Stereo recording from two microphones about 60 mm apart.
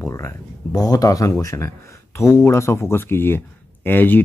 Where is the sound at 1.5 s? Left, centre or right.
Left.